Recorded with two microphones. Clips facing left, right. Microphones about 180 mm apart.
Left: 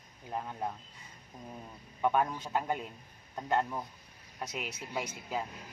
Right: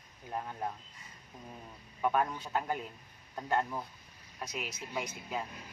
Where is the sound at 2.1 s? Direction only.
20° left (ahead or behind).